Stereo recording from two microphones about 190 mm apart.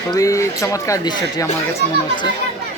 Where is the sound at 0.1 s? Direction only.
15° left (ahead or behind).